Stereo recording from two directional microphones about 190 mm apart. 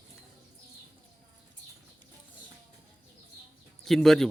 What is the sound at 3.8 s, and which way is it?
Speech, centre (ahead or behind).